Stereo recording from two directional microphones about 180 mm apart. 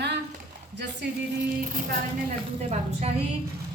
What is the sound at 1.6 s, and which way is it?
Speech, 50° right (ahead or behind).